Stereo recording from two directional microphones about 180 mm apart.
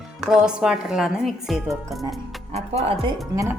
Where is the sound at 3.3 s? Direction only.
15° right (ahead or behind).